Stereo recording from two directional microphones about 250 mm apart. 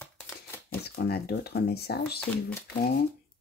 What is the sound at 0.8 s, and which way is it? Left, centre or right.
Speech, left.